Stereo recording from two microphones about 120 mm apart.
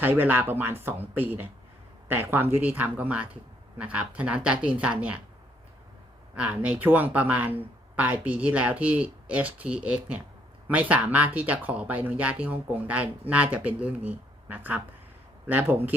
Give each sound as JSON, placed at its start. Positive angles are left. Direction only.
{"t": 0.0, "sound": "speech", "side_deg": -15}
{"t": 6.3, "sound": "speech", "side_deg": -10}